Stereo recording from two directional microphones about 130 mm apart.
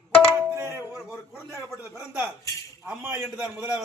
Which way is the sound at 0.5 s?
20° right (ahead or behind).